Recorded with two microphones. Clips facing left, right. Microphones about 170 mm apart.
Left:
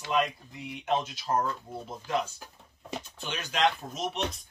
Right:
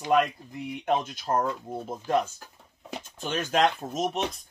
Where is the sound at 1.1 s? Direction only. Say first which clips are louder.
Right 2 dB; 50° right (ahead or behind).